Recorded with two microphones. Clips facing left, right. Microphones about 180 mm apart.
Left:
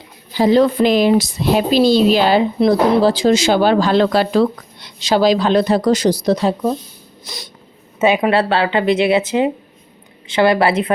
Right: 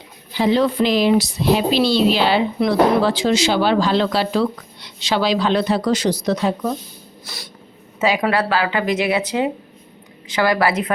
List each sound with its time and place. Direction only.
0.3 s speech: 40° left (ahead or behind)
7.3 s a sound: 20° left (ahead or behind)
7.9 s speech: 25° left (ahead or behind)